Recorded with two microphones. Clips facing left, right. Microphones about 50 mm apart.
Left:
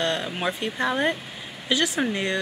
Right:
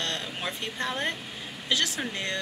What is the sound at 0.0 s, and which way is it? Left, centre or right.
Speech, centre.